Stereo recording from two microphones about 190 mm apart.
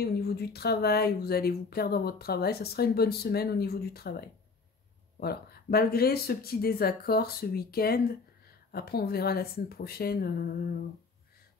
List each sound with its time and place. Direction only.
0.0 s speech: 55° left (ahead or behind)